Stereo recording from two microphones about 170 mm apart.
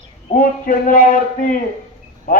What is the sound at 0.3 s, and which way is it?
A man's voice, 55° left (ahead or behind).